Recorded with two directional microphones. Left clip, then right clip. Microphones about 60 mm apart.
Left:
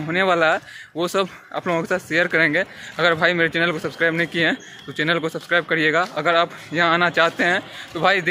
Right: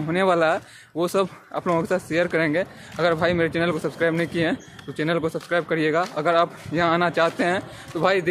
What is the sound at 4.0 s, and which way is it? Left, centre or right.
A man's voice, right.